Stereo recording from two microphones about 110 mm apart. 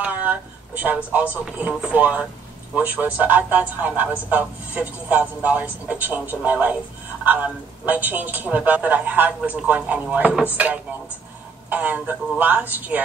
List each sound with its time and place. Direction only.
0.0 s a man's voice: 15° right (ahead or behind)
11.7 s a man's voice: 15° right (ahead or behind)